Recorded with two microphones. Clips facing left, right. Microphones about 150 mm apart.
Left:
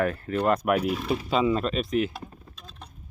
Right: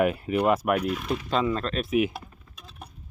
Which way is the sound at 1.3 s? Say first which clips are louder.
Left 2 dB; 5° left (ahead or behind).